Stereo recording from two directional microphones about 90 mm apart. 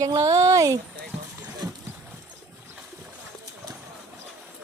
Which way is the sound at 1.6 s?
45° right (ahead or behind).